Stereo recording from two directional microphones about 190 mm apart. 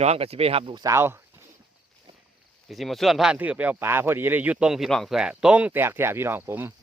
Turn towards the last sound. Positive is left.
turn(degrees=-10)  # may be behind; listen again after turning